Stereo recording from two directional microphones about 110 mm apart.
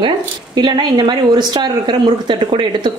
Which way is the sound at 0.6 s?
40° right (ahead or behind).